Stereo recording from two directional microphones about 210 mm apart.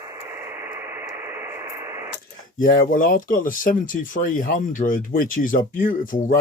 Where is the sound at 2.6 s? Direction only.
40° left (ahead or behind).